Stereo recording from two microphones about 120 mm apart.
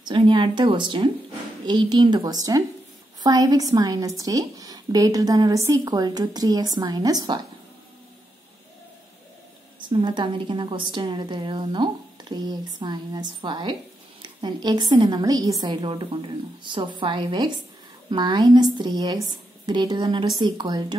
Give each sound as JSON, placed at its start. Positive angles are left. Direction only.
{"t": 0.0, "sound": "a woman's voice", "side_deg": -40}
{"t": 9.8, "sound": "a woman's voice", "side_deg": -40}